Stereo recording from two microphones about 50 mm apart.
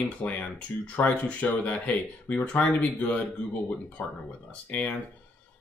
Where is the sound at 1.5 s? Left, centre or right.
Left.